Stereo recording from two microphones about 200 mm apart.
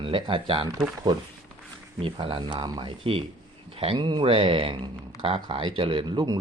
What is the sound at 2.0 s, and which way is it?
Speech, 25° right (ahead or behind).